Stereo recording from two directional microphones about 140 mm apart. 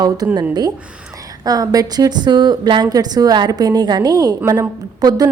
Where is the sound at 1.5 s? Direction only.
25° right (ahead or behind).